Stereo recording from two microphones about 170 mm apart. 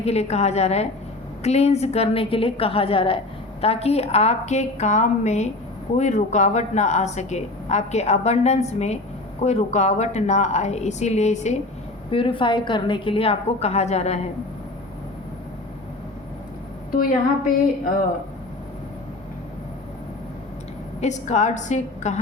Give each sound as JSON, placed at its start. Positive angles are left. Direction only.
{"t": 0.0, "sound": "a woman's voice", "side_deg": 40}
{"t": 12.1, "sound": "a woman's voice", "side_deg": 30}
{"t": 16.9, "sound": "a woman's voice", "side_deg": 55}
{"t": 21.0, "sound": "a woman's voice", "side_deg": 45}